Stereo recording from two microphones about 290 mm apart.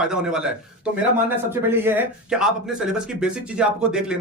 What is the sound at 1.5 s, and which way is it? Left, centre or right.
Speech, centre.